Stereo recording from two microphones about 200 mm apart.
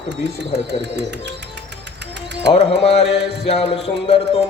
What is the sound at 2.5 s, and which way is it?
Mantra, 30° left (ahead or behind).